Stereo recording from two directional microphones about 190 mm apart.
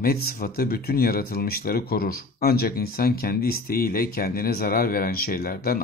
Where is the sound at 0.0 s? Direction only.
55° left (ahead or behind).